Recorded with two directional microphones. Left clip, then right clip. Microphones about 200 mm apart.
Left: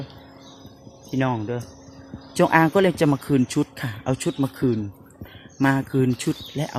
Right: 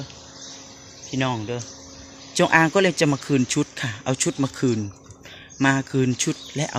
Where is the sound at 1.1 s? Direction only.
20° left (ahead or behind).